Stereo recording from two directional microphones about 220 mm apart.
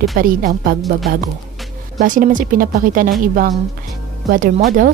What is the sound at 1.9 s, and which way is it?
A woman's voice, 35° right (ahead or behind).